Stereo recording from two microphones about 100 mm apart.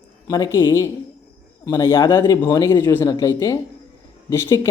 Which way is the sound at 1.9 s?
45° left (ahead or behind).